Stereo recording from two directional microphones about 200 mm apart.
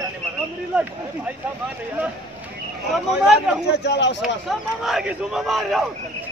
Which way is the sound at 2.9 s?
5° right (ahead or behind).